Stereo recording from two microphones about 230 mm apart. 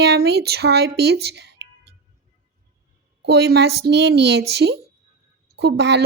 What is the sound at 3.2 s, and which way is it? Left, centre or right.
Speech, right.